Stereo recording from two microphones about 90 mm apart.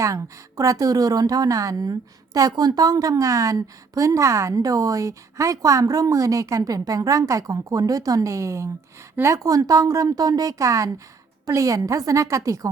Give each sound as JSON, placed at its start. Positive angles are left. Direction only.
{"t": 0.0, "sound": "a woman's voice", "side_deg": -35}